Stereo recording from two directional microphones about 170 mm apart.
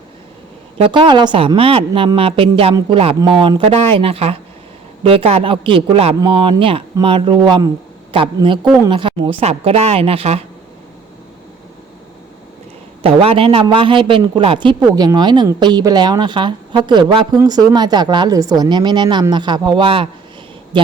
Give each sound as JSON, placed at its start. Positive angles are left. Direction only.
{"t": 0.8, "sound": "a woman's voice", "side_deg": -30}
{"t": 13.0, "sound": "a man's voice", "side_deg": -35}